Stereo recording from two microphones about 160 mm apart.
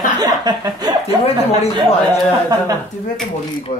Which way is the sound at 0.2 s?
25° right (ahead or behind).